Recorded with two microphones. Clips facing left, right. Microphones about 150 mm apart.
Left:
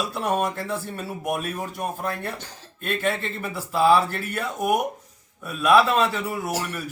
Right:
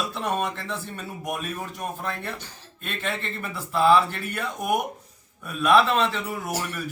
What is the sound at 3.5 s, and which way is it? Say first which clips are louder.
A man's voice: even; 5° left (ahead or behind).